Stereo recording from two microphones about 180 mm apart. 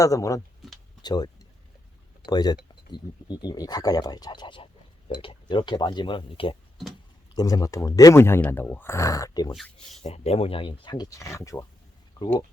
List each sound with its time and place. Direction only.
0.0 s speech: 20° left (ahead or behind)
7.3 s speech: 20° left (ahead or behind)
10.0 s speech: 35° left (ahead or behind); by 11.6 s 15° left (ahead or behind)